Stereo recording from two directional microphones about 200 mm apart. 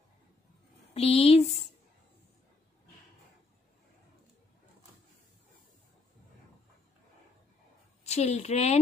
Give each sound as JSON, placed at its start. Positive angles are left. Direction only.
{"t": 0.9, "sound": "speech", "side_deg": 30}
{"t": 8.0, "sound": "a woman's voice", "side_deg": 35}